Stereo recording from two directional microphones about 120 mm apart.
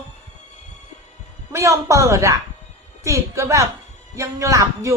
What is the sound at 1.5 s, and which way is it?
A woman's voice, 25° right (ahead or behind).